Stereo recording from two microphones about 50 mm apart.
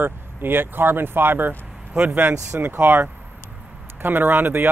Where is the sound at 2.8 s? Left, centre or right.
Right.